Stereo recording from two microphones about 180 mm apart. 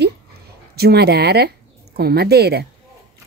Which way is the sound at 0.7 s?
60° right (ahead or behind).